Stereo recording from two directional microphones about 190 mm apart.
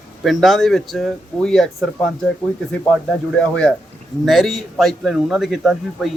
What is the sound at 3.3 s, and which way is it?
A man's voice, 5° left (ahead or behind).